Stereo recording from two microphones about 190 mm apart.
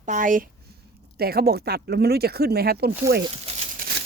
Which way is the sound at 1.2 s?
55° right (ahead or behind).